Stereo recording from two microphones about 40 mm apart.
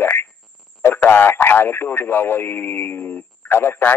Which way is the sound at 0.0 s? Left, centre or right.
Left.